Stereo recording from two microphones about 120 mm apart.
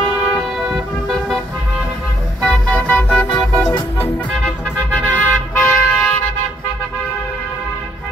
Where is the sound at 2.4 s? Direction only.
10° left (ahead or behind).